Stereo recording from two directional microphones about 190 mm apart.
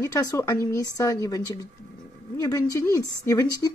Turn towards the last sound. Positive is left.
turn(degrees=20)  # may be behind; listen again after turning